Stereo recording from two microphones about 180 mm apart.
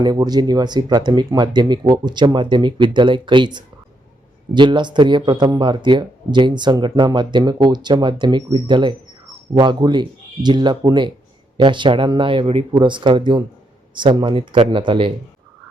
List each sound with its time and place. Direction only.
0.0 s a man's voice: 25° right (ahead or behind)